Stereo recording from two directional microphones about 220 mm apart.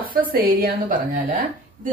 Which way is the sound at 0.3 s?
40° right (ahead or behind).